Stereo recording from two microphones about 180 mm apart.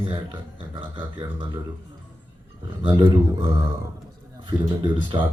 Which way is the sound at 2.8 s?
25° right (ahead or behind).